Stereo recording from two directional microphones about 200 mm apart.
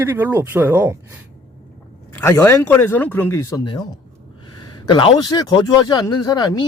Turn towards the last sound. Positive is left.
turn(degrees=20)  # may be behind; listen again after turning